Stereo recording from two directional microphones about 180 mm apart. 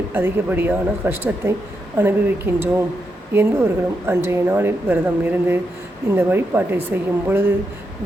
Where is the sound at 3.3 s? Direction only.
15° right (ahead or behind).